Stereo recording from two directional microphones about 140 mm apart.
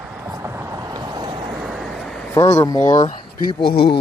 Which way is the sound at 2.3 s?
20° left (ahead or behind).